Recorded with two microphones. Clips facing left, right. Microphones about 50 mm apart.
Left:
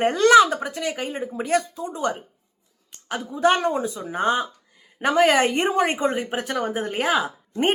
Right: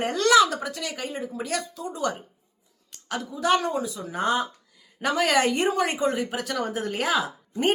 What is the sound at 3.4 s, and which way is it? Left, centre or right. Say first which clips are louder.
Speech: left 4 dB; left.